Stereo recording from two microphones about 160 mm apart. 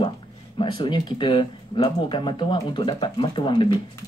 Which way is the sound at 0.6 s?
30° left (ahead or behind).